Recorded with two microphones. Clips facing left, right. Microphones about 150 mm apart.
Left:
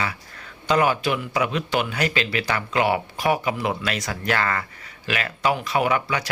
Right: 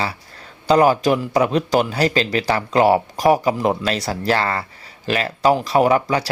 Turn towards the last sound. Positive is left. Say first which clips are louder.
# right 6 dB
turn(degrees=-35)  # may be behind; listen again after turning